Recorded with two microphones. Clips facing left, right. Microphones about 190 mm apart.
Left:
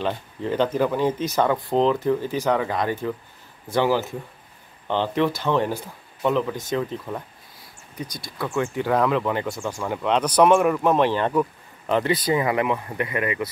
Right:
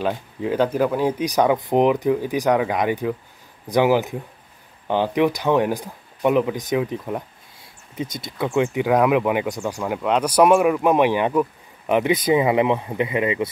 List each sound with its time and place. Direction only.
0.0 s speech: 5° right (ahead or behind)